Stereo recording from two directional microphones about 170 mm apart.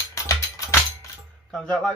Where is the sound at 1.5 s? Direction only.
5° left (ahead or behind).